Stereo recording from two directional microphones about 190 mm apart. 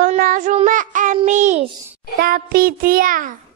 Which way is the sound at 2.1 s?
50° right (ahead or behind).